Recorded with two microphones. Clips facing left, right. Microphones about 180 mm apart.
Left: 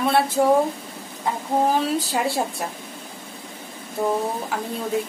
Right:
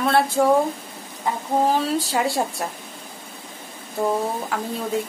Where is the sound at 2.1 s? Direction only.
Centre (ahead or behind).